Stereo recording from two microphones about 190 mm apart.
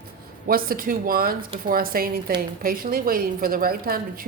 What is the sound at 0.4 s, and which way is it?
A woman's voice, 50° right (ahead or behind).